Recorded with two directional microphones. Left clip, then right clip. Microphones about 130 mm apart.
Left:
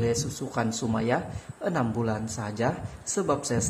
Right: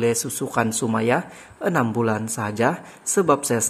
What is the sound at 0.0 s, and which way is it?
A woman's voice, 35° right (ahead or behind).